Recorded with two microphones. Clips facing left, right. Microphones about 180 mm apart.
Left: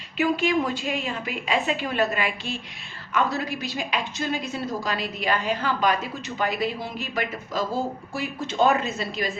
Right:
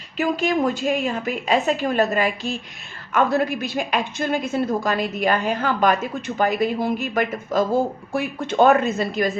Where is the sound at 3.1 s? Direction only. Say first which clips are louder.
Right 6 dB; 50° right (ahead or behind).